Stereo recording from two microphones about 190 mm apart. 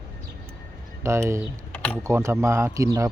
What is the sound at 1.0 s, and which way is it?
Speech, 15° right (ahead or behind).